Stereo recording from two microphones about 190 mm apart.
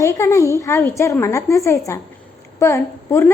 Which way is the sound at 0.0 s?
15° left (ahead or behind).